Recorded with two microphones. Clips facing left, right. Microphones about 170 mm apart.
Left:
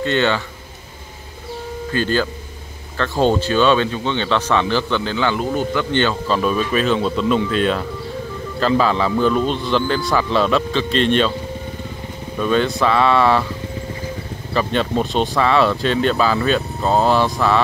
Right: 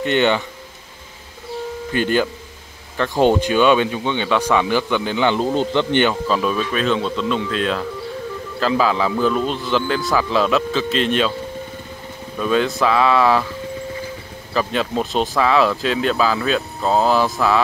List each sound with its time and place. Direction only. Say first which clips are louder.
0.0 s speech: right 1 dB; 15° right (ahead or behind)
1.9 s speech: right 1 dB; 15° right (ahead or behind)
6.2 s speech: left 1 dB; centre (ahead or behind)
12.4 s speech: left 1 dB; centre (ahead or behind)
14.5 s speech: left 1 dB; 5° right (ahead or behind)